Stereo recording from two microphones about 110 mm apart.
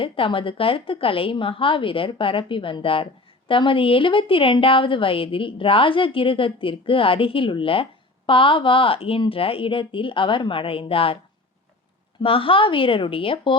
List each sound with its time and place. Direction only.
0.0 s a woman's voice: 55° left (ahead or behind)
12.2 s a woman's voice: 55° left (ahead or behind)